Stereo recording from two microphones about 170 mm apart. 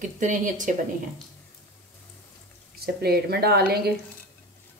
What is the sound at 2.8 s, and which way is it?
Speech, 70° right (ahead or behind).